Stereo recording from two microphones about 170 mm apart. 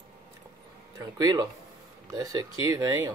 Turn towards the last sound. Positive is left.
turn(degrees=-20)  # may be behind; listen again after turning